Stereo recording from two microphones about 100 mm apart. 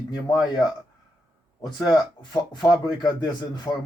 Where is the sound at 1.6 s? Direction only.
40° left (ahead or behind).